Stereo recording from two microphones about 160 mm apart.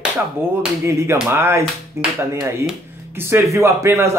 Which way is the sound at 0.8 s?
15° right (ahead or behind).